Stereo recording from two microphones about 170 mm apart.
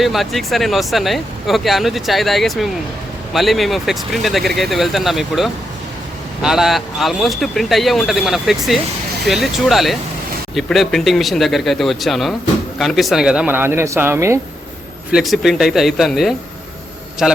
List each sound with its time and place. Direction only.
0.0 s speech: centre (ahead or behind)
15.1 s speech: centre (ahead or behind)